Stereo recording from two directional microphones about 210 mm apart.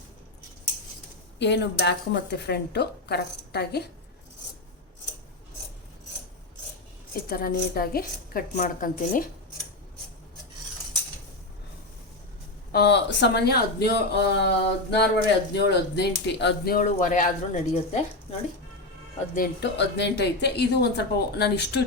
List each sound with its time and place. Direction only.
1.4 s speech: 55° left (ahead or behind)
7.3 s speech: 45° left (ahead or behind)
12.7 s speech: 55° left (ahead or behind); by 18.3 s 35° left (ahead or behind)
19.3 s speech: 45° left (ahead or behind)